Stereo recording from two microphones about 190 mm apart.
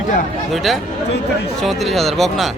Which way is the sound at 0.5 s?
Centre (ahead or behind).